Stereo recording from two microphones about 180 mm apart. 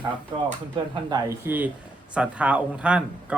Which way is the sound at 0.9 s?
20° right (ahead or behind).